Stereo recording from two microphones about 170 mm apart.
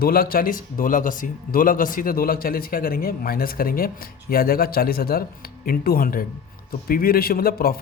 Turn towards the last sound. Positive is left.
turn(degrees=60)  # may be behind; listen again after turning